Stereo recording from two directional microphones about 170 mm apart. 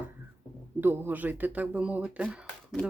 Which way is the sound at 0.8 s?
10° right (ahead or behind).